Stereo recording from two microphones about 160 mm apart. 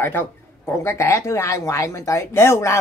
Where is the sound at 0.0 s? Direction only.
15° left (ahead or behind).